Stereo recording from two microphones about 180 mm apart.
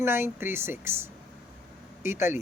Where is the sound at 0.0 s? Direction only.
15° right (ahead or behind).